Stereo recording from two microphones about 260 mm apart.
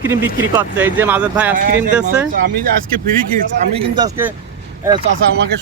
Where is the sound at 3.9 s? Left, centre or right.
Centre.